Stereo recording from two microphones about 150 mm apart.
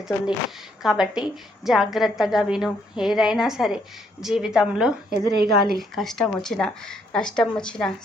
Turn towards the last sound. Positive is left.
turn(degrees=5)  # may be behind; listen again after turning